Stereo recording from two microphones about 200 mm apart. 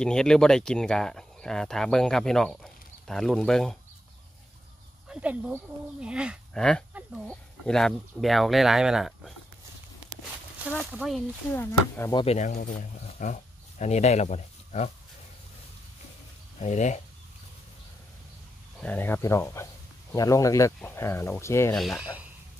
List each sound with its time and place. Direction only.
0.0 s speech: 5° left (ahead or behind)
5.0 s speech: 5° right (ahead or behind)
10.9 s speech: centre (ahead or behind)
11.5 s speech: 10° left (ahead or behind)
12.3 s speech: 35° left (ahead or behind)
16.5 s speech: 35° left (ahead or behind)
18.8 s speech: 10° left (ahead or behind)
21.7 s speech: centre (ahead or behind)